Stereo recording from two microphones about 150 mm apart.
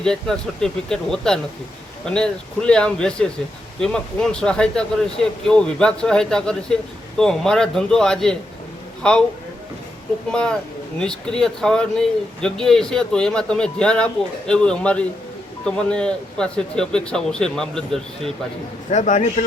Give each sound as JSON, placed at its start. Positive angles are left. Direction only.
{"t": 0.0, "sound": "speech", "side_deg": 5}
{"t": 10.3, "sound": "speech", "side_deg": 5}
{"t": 18.9, "sound": "a man's voice", "side_deg": 55}